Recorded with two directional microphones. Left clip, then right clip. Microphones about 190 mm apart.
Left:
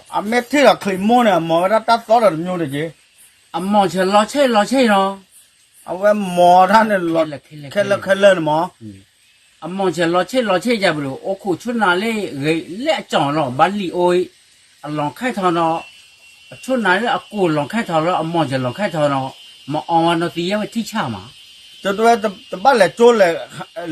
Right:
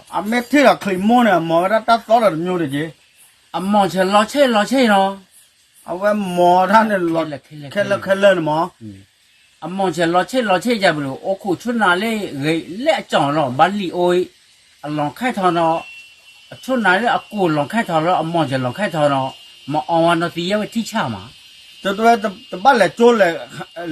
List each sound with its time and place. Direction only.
0.1 s speech: 20° left (ahead or behind)
3.5 s a man's voice: 10° right (ahead or behind)
5.8 s speech: 20° left (ahead or behind)
7.2 s a man's voice: 10° right (ahead or behind)
7.7 s speech: 20° left (ahead or behind)
9.6 s a man's voice: 10° right (ahead or behind)
21.8 s speech: 20° left (ahead or behind)